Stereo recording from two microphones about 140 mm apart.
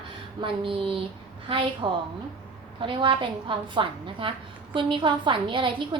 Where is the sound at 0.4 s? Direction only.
40° right (ahead or behind).